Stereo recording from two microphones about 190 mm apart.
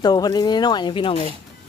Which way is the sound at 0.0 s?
20° left (ahead or behind).